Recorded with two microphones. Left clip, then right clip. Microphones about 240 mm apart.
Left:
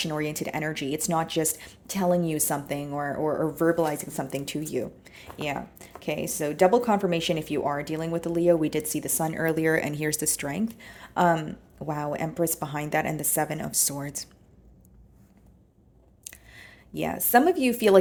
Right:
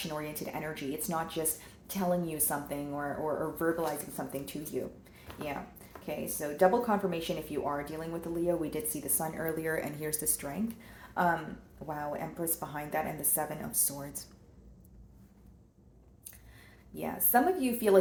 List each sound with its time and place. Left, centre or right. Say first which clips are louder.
0.0 s speech: left 8 dB; left
5.3 s a woman's voice: left 7 dB; left
6.1 s speech: left 8 dB; left
11.9 s speech: left 7 dB; left
16.9 s speech: left 7 dB; left